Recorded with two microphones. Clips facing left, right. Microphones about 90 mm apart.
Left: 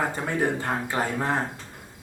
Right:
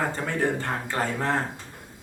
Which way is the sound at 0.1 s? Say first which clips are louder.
Even; 10° left (ahead or behind).